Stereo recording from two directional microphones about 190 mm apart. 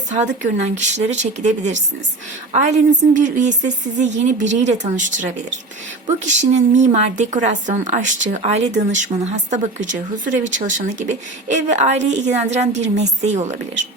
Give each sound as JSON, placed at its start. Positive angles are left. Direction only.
{"t": 0.1, "sound": "a woman's voice", "side_deg": -40}
{"t": 10.7, "sound": "a woman's voice", "side_deg": -40}